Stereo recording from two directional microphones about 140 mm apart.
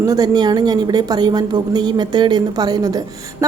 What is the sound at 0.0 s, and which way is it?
A woman's voice, 25° right (ahead or behind).